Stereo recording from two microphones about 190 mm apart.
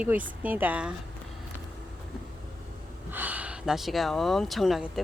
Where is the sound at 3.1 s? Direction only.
10° right (ahead or behind).